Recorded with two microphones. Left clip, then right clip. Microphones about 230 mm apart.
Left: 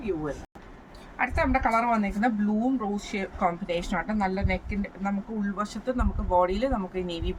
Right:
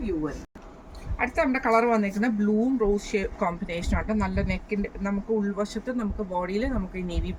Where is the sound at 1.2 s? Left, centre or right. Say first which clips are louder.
Even; centre.